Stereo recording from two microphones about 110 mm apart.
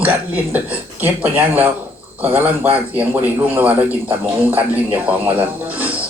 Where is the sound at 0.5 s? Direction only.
15° right (ahead or behind).